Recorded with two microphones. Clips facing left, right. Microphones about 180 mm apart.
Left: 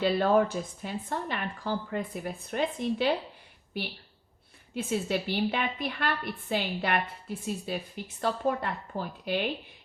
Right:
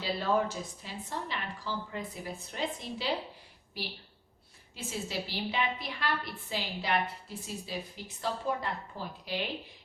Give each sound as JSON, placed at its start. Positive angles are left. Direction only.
{"t": 0.0, "sound": "a woman's voice", "side_deg": 55}
{"t": 4.7, "sound": "a woman's voice", "side_deg": 60}